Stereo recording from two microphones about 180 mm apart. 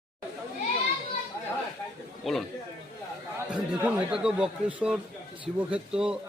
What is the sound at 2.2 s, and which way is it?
Speech, centre (ahead or behind).